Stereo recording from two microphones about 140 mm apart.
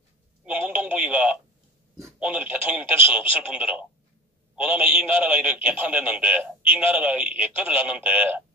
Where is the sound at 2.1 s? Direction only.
10° right (ahead or behind).